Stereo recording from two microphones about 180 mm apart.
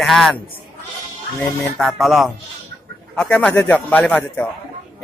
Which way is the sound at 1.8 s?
Centre (ahead or behind).